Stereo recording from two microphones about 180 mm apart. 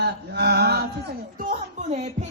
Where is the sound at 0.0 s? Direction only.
65° right (ahead or behind).